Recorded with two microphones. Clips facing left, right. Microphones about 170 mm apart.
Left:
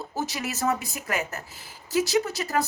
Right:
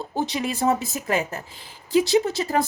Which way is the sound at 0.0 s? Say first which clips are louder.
Right 5 dB; 25° right (ahead or behind).